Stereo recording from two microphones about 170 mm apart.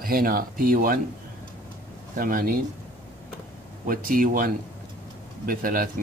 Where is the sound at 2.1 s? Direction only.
55° right (ahead or behind).